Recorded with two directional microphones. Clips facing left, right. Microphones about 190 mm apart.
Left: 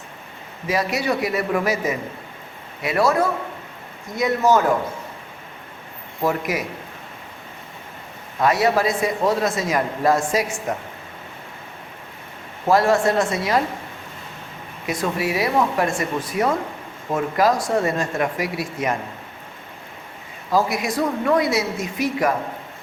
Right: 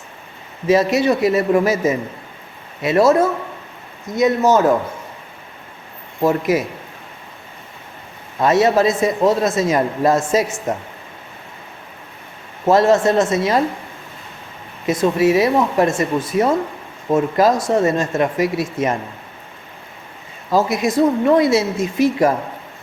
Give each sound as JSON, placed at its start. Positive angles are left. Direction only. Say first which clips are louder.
{"t": 0.7, "sound": "speech", "louder": "right 7 dB", "side_deg": -25}
{"t": 6.2, "sound": "speech", "louder": "right 6 dB", "side_deg": -25}
{"t": 8.4, "sound": "speech", "louder": "right 4 dB", "side_deg": -25}
{"t": 12.6, "sound": "speech", "louder": "right 4 dB", "side_deg": -20}
{"t": 14.8, "sound": "speech", "louder": "right 8 dB", "side_deg": -25}
{"t": 20.5, "sound": "speech", "louder": "right 4 dB", "side_deg": -25}